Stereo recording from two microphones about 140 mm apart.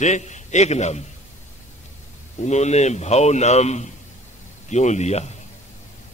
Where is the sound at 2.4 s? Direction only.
55° left (ahead or behind).